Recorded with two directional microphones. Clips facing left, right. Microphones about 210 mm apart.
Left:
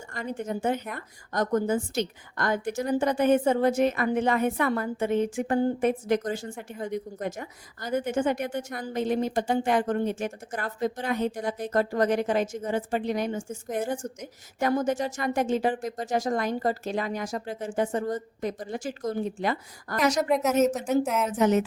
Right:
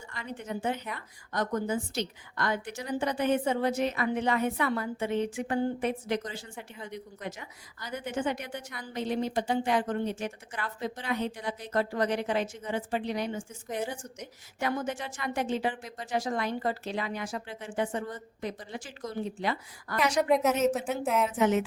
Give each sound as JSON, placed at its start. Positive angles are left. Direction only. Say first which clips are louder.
{"t": 0.1, "sound": "a woman's voice", "louder": "left 6 dB", "side_deg": 45}
{"t": 20.2, "sound": "speech", "louder": "even", "side_deg": 0}
{"t": 21.2, "sound": "a woman's voice", "louder": "left 2 dB", "side_deg": 40}